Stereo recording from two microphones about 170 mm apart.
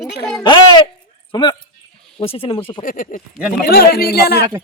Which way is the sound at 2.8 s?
55° left (ahead or behind).